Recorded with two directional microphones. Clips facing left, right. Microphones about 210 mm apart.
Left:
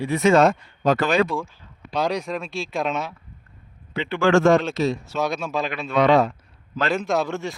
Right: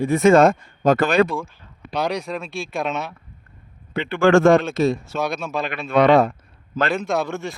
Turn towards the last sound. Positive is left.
turn(degrees=0)  # may be behind; listen again after turning